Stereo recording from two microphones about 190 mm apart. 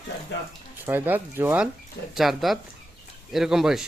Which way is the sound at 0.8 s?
10° right (ahead or behind).